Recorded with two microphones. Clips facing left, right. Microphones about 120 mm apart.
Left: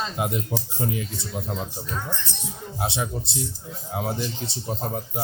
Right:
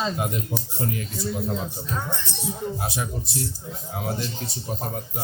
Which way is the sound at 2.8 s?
25° left (ahead or behind).